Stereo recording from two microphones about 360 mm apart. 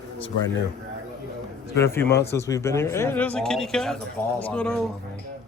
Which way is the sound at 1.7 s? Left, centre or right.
Centre.